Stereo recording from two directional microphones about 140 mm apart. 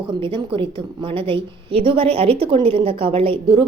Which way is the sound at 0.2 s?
35° right (ahead or behind).